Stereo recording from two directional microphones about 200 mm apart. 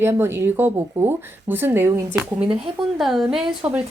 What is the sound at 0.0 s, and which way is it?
Speech, 10° right (ahead or behind).